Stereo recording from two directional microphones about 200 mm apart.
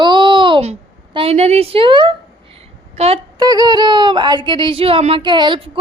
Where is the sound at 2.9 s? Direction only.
30° right (ahead or behind).